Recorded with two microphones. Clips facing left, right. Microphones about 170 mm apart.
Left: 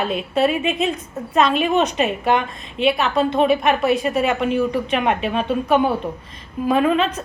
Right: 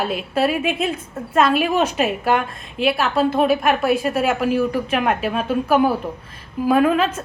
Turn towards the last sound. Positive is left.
turn(degrees=-5)  # may be behind; listen again after turning